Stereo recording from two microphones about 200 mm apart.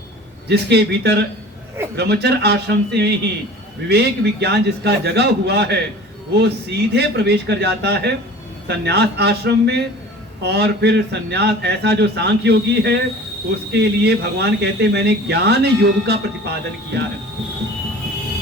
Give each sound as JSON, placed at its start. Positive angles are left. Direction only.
{"t": 0.4, "sound": "speech", "side_deg": -55}